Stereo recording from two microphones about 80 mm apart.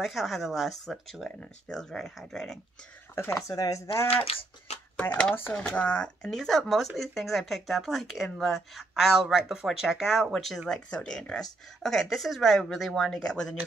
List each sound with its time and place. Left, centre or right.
0.0 s speech: centre
3.2 s speech: left
5.3 s speech: left
5.8 s speech: centre